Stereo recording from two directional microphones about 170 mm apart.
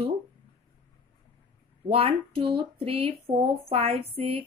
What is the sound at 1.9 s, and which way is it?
Speech, 35° right (ahead or behind).